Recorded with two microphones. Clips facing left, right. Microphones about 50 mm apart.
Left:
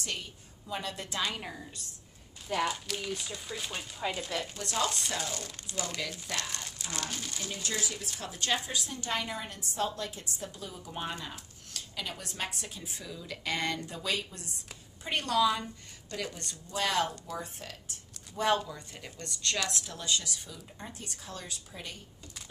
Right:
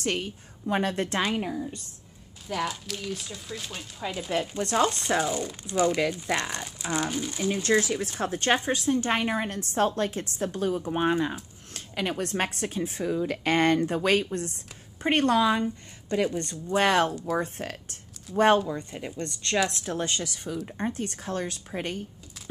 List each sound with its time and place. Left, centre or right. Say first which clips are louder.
0.0 s a woman's voice: right 10 dB; right
1.3 s speech: right 10 dB; right
2.4 s speech: right 1 dB; centre
4.3 s a woman's voice: right 8 dB; right
5.2 s speech: right 9 dB; centre
7.8 s a woman's voice: right 10 dB; right
16.7 s a woman's voice: right 8 dB; right